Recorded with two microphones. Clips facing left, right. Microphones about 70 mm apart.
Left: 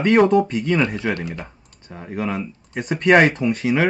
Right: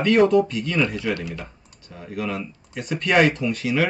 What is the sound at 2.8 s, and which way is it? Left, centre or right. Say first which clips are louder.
Speech: left 4 dB; left.